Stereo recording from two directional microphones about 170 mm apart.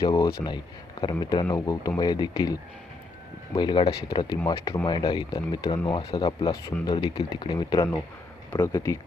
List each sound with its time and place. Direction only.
0.0 s speech: 20° left (ahead or behind)